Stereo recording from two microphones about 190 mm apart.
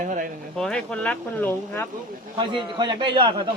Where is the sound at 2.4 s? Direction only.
25° right (ahead or behind).